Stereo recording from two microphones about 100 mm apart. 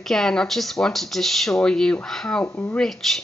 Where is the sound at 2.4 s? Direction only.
20° left (ahead or behind).